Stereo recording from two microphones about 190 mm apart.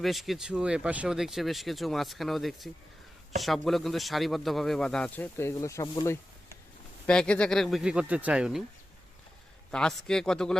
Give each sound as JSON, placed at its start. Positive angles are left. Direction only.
{"t": 0.0, "sound": "speech", "side_deg": 0}
{"t": 7.1, "sound": "speech", "side_deg": 5}
{"t": 9.7, "sound": "speech", "side_deg": 5}